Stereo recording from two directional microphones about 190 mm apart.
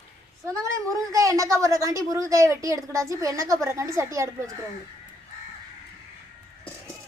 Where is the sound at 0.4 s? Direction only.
15° right (ahead or behind).